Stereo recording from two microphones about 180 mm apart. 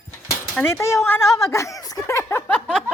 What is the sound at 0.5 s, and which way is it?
Speech, 10° left (ahead or behind).